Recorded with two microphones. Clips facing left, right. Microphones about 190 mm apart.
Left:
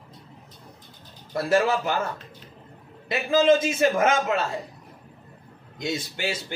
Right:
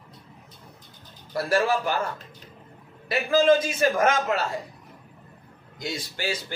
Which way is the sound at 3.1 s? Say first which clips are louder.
Even; 25° left (ahead or behind).